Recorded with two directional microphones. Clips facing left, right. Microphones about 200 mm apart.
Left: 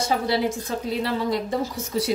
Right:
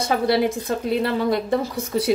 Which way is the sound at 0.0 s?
60° right (ahead or behind).